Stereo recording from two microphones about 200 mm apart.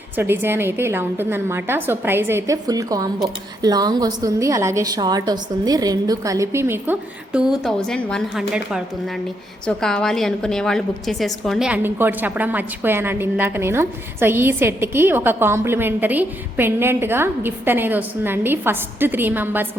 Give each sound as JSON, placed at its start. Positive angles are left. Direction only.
{"t": 0.2, "sound": "a woman's voice", "side_deg": -10}